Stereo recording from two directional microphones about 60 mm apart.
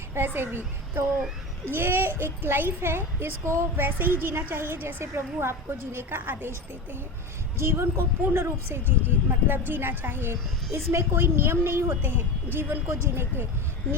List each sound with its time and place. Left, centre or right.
0.1 s speech: right
3.8 s speech: right
7.6 s speech: right
10.7 s a woman's voice: right